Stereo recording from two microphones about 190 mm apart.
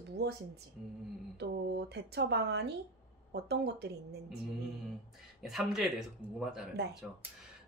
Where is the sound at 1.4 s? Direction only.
60° right (ahead or behind).